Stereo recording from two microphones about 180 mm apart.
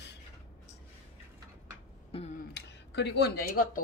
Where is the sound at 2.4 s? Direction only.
70° left (ahead or behind).